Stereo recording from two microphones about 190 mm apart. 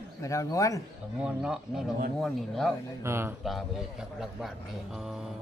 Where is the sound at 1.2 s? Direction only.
5° right (ahead or behind).